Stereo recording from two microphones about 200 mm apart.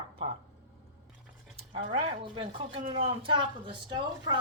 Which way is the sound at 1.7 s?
25° right (ahead or behind).